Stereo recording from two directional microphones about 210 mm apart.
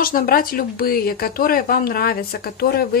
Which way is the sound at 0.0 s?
45° left (ahead or behind).